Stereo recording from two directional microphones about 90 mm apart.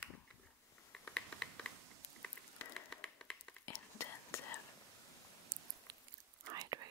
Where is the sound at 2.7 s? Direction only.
5° left (ahead or behind).